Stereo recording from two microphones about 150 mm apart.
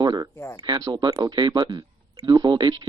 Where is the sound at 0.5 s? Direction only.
30° right (ahead or behind).